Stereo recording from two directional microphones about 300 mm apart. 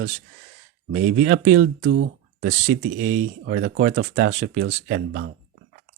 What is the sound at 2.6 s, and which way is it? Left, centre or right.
Speech, right.